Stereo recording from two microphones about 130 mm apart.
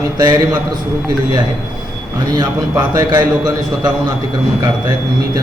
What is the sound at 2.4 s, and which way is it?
Speech, 30° right (ahead or behind).